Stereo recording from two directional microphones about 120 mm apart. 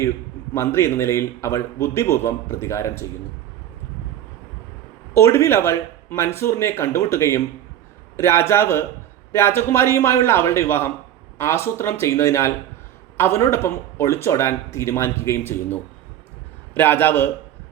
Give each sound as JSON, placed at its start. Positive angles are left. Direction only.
{"t": 0.5, "sound": "speech", "side_deg": 20}
{"t": 5.1, "sound": "a man's voice", "side_deg": 20}